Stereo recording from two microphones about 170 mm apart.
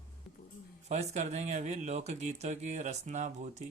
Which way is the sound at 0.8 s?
40° right (ahead or behind).